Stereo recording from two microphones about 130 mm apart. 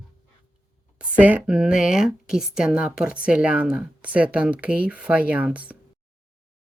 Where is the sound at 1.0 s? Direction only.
10° right (ahead or behind).